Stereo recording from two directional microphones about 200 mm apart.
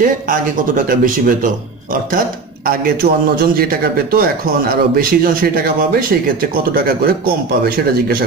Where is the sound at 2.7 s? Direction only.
50° right (ahead or behind).